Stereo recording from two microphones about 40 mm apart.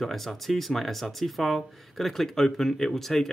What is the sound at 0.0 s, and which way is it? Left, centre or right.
Speech, centre.